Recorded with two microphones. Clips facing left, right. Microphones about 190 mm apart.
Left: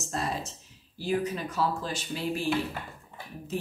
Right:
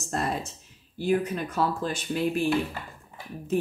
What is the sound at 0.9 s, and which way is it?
Speech, 55° right (ahead or behind).